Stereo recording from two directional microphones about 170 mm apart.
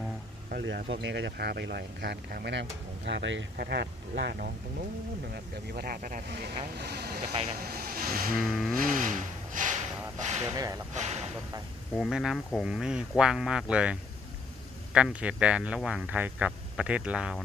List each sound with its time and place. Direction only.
0.5 s speech: 75° right (ahead or behind); by 6.5 s 60° right (ahead or behind)
6.7 s speech: 70° right (ahead or behind)
7.6 s vehicle: 60° right (ahead or behind)
8.4 s speech: centre (ahead or behind)
8.7 s a sound: 55° right (ahead or behind)
10.4 s speech: 20° right (ahead or behind)
10.9 s speech: 40° right (ahead or behind)
11.9 s speech: centre (ahead or behind)
14.9 s speech: 5° right (ahead or behind)